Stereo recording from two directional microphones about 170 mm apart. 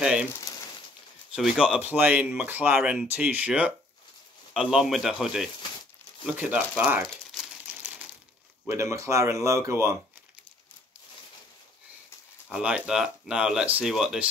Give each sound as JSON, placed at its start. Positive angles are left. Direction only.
{"t": 0.0, "sound": "speech", "side_deg": -5}
{"t": 1.3, "sound": "speech", "side_deg": -5}
{"t": 8.6, "sound": "speech", "side_deg": -15}
{"t": 12.4, "sound": "speech", "side_deg": -5}